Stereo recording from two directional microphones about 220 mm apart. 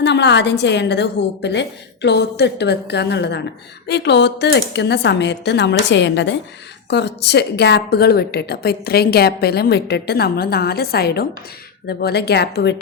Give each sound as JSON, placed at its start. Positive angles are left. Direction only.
{"t": 0.0, "sound": "a woman's voice", "side_deg": 50}